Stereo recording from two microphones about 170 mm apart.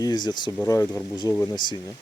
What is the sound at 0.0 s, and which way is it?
Speech, 25° left (ahead or behind).